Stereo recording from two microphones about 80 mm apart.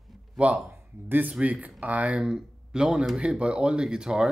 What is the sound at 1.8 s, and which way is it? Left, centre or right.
Speech, centre.